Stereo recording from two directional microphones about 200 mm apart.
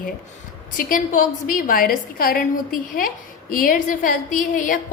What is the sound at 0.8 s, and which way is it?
A woman's voice, 45° left (ahead or behind).